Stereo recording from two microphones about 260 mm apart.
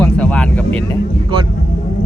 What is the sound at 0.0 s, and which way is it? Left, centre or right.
Vehicle, centre.